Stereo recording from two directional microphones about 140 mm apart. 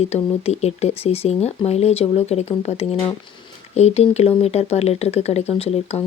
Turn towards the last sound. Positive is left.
turn(degrees=45)  # may be behind; listen again after turning